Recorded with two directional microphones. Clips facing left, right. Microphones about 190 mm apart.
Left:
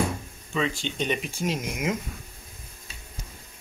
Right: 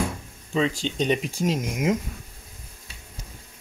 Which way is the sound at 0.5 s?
35° right (ahead or behind).